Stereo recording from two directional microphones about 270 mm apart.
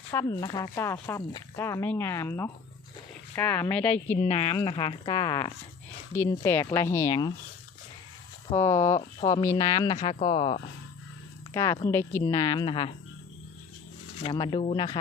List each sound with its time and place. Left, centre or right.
0.1 s speech: centre
4.2 s speech: left
8.4 s speech: centre
9.9 s speech: left
14.2 s speech: centre